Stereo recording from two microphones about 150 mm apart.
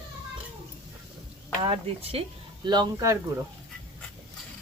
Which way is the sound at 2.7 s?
25° right (ahead or behind).